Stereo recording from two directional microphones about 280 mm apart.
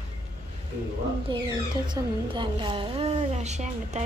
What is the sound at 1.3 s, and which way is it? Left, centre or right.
A woman's voice, centre.